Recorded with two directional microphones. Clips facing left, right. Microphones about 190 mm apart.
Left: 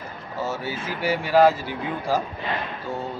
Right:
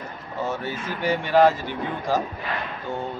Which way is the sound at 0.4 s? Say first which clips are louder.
Even; 5° left (ahead or behind).